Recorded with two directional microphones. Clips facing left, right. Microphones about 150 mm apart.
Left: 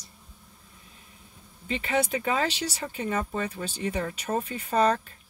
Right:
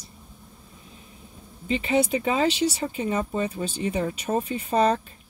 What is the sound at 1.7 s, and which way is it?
Speech, 25° right (ahead or behind).